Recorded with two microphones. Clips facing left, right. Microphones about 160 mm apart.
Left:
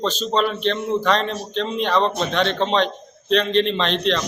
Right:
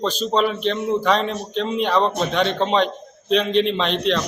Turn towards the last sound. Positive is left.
turn(degrees=-5)  # may be behind; listen again after turning